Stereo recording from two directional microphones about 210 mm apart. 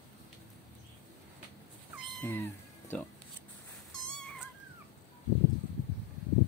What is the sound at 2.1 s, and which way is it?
Cat, 5° left (ahead or behind).